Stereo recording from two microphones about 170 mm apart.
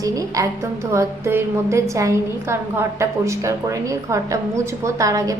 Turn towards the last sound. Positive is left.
turn(degrees=-20)  # may be behind; listen again after turning